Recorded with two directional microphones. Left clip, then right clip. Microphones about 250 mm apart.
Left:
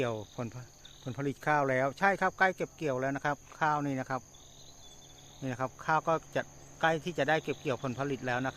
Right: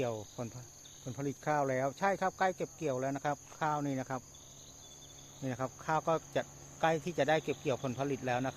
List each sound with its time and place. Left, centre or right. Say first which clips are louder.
0.0 s cricket: left 3 dB; left
1.0 s speech: left 4 dB; left; by 4.2 s centre
5.4 s speech: left 3 dB; centre